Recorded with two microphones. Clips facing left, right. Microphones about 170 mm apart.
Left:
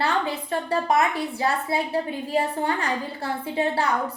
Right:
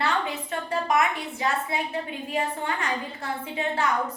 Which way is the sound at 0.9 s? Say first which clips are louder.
Left 1 dB; 35° left (ahead or behind).